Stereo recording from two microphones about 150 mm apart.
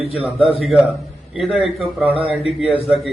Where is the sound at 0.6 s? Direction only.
10° right (ahead or behind).